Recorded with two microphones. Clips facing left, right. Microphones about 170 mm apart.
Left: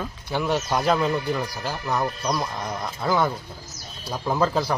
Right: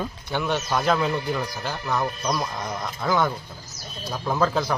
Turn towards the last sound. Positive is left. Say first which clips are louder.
# left 1 dB
turn(degrees=5)  # may be behind; listen again after turning